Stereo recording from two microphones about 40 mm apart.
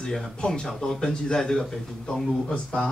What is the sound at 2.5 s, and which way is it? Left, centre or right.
Speech, left.